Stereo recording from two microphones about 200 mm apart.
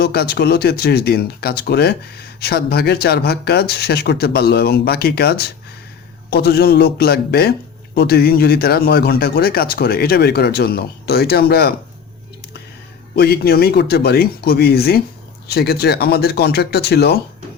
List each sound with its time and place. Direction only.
0.0 s speech: 55° left (ahead or behind)
13.1 s speech: 50° left (ahead or behind)